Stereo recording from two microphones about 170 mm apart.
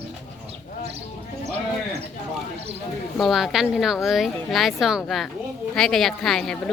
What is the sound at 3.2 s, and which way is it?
A woman's voice, centre (ahead or behind).